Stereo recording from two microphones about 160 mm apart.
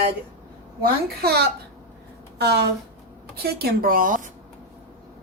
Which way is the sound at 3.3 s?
80° right.